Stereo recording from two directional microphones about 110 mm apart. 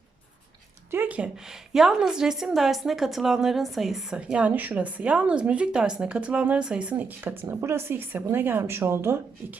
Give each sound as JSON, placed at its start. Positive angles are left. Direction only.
{"t": 0.9, "sound": "a woman's voice", "side_deg": -15}